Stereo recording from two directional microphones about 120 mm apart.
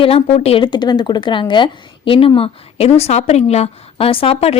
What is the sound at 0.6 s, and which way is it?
A woman's voice, 35° left (ahead or behind).